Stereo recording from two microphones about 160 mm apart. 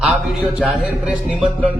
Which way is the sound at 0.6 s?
5° right (ahead or behind).